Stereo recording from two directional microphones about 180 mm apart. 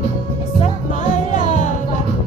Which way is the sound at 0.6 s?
45° left (ahead or behind).